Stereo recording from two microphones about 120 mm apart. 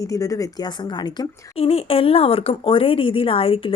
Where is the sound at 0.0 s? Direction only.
30° left (ahead or behind).